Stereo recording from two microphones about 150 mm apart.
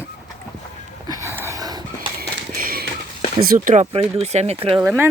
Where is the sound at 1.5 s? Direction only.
25° right (ahead or behind).